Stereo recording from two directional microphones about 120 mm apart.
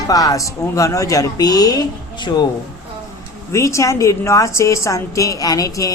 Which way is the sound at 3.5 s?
25° left (ahead or behind).